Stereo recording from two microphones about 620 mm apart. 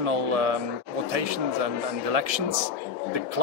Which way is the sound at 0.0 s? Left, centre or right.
Right.